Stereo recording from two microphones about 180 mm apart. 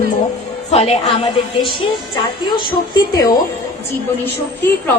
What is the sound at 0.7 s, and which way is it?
Speech, 35° left (ahead or behind).